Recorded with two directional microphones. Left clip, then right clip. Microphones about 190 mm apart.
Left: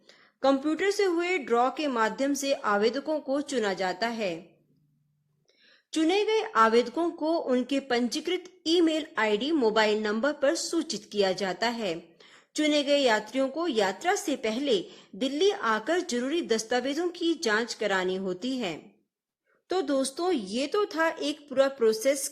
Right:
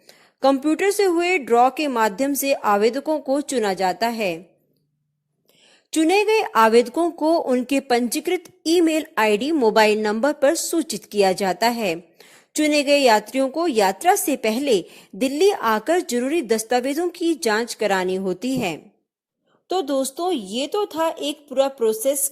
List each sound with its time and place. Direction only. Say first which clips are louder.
0.1 s speech: right 6 dB; 40° right (ahead or behind)
5.9 s speech: right 8 dB; 40° right (ahead or behind)
19.6 s a woman's voice: right 6 dB; 20° right (ahead or behind)
20.3 s a woman's voice: right 5 dB; 10° left (ahead or behind)
20.7 s speech: right 4 dB; 20° right (ahead or behind)
21.1 s a woman's voice: right 5 dB; 10° left (ahead or behind)